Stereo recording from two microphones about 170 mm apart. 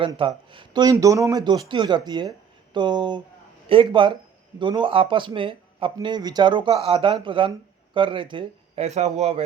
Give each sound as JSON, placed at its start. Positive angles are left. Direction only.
{"t": 0.0, "sound": "speech", "side_deg": -30}